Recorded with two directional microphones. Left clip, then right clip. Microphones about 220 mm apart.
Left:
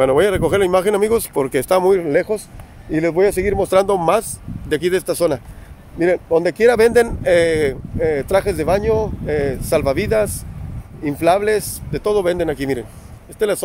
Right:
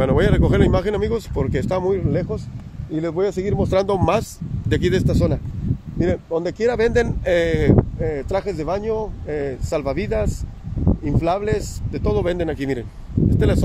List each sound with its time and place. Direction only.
0.0 s speech: 10° left (ahead or behind)
5.1 s speech: 15° left (ahead or behind)